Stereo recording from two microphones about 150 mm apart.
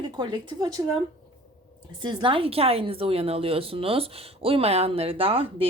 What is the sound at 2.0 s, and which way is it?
A woman's voice, 30° right (ahead or behind).